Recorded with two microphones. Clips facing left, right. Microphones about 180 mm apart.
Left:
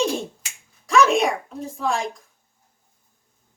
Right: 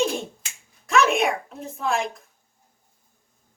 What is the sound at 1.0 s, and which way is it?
Speech, centre (ahead or behind).